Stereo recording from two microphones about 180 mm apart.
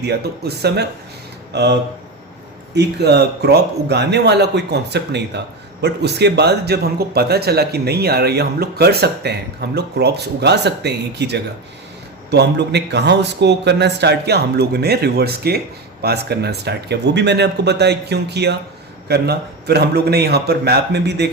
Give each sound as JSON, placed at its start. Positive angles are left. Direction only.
{"t": 0.0, "sound": "a man's voice", "side_deg": -65}
{"t": 2.7, "sound": "a man's voice", "side_deg": -65}